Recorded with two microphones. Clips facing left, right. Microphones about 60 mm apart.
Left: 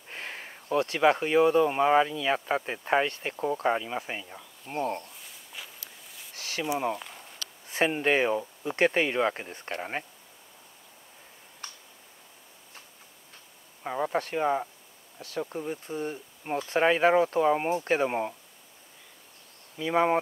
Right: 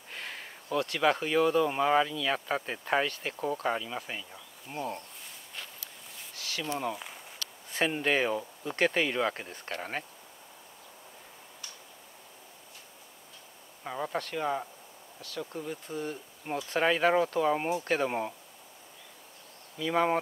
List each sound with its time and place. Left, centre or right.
0.1 s speech: centre
5.2 s walk: centre
6.3 s a sound: left
6.6 s speech: centre
6.9 s a sound: centre
7.7 s speech: left
11.6 s tick-tock: left
13.8 s speech: centre
15.1 s speech: left
15.5 s speech: centre
19.8 s speech: centre